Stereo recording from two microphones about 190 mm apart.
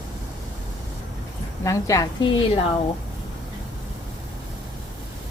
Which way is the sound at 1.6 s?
15° left (ahead or behind).